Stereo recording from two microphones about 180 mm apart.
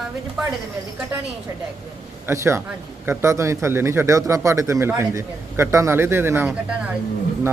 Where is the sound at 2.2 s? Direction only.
15° right (ahead or behind).